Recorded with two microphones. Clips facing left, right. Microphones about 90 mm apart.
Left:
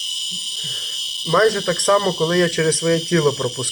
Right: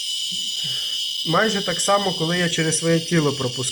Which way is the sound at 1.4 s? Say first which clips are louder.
Left 5 dB; 20° left (ahead or behind).